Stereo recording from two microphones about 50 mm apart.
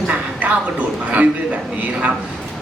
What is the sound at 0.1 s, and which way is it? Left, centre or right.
A man's voice, right.